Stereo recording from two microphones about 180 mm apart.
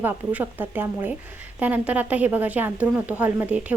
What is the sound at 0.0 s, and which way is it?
Speech, 10° right (ahead or behind).